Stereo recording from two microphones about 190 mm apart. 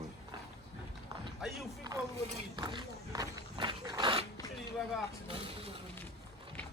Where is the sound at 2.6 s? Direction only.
25° right (ahead or behind).